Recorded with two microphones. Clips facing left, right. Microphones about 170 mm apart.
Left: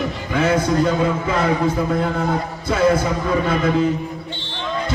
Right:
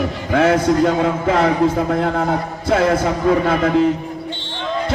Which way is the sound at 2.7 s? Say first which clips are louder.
Right 1 dB; 80° right.